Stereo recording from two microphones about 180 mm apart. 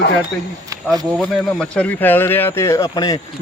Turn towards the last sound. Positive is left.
turn(degrees=20)  # may be behind; listen again after turning